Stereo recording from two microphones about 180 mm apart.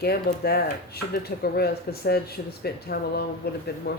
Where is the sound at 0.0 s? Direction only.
60° left (ahead or behind).